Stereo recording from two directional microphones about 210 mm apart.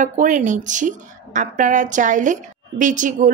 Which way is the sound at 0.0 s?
35° right (ahead or behind).